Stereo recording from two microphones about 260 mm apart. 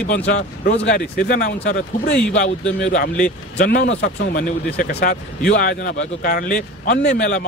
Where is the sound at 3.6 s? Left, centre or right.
Left.